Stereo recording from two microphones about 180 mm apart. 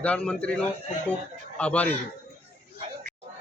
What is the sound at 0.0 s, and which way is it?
A man's voice, 5° left (ahead or behind).